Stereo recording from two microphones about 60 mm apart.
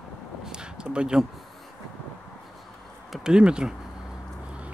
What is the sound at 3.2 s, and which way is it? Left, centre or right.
Speech, centre.